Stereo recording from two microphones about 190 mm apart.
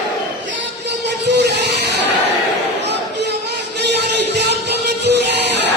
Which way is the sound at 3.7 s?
65° right (ahead or behind).